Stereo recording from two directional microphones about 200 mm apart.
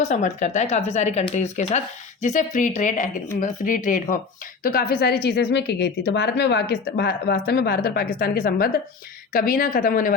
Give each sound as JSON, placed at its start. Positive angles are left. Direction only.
{"t": 0.0, "sound": "a woman's voice", "side_deg": 35}